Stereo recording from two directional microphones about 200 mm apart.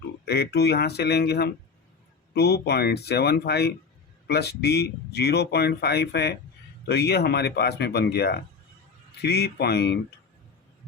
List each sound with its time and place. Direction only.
0.3 s speech: 55° left (ahead or behind)